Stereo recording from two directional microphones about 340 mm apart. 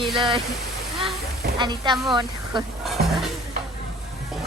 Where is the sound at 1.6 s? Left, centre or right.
Centre.